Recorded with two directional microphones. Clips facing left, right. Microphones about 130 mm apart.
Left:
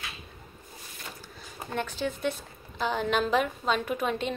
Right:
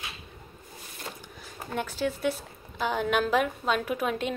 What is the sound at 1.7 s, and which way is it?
A woman's voice, 5° right (ahead or behind).